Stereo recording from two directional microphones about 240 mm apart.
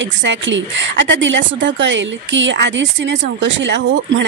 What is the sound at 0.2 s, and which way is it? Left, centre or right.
A woman's voice, right.